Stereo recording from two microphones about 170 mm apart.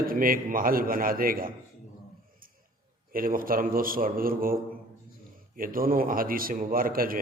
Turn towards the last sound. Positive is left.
turn(degrees=-55)  # may be behind; listen again after turning